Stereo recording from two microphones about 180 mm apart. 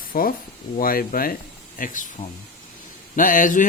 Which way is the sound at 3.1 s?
50° left (ahead or behind).